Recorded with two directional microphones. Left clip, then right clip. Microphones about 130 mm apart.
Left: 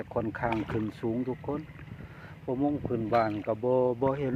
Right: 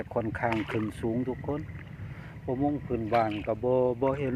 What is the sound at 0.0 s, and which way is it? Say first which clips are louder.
Speech: right 1 dB; 5° right (ahead or behind).